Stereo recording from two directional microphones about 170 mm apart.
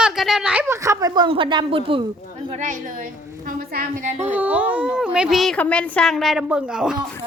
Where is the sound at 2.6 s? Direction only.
50° right (ahead or behind).